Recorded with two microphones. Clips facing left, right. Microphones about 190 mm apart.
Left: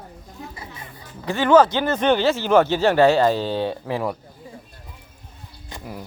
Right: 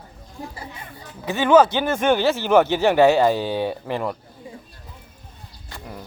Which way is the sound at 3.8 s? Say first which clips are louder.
Left 1 dB; centre (ahead or behind).